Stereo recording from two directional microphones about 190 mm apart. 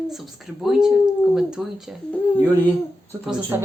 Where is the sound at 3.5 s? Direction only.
10° right (ahead or behind).